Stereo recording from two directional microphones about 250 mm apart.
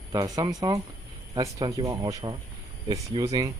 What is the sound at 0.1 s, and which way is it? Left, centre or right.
Speech, centre.